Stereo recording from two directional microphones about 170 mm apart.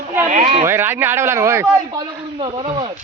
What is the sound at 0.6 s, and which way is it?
A man's voice, 15° right (ahead or behind).